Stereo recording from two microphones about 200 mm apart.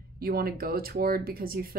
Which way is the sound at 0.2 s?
50° right (ahead or behind).